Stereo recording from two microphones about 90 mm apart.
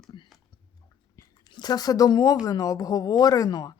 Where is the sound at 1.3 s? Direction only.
50° left (ahead or behind).